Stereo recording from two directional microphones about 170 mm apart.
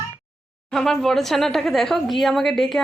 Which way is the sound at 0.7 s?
Centre (ahead or behind).